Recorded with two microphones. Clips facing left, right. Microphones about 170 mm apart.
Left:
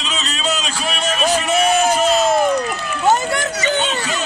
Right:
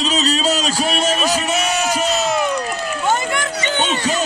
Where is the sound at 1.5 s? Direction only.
50° left (ahead or behind).